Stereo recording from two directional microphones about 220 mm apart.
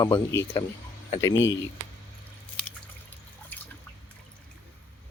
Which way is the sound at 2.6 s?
5° left (ahead or behind).